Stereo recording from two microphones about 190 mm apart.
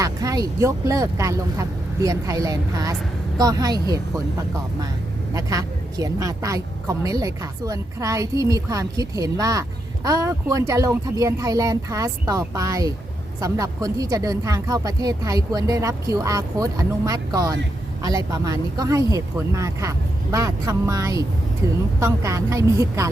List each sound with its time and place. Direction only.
0.0 s a woman's voice: 20° right (ahead or behind)
5.3 s a woman's voice: 20° right (ahead or behind)